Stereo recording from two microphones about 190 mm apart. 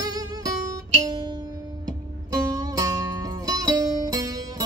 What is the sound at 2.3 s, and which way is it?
Music, 20° right (ahead or behind).